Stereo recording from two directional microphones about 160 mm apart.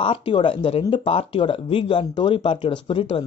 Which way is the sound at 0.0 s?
30° left (ahead or behind).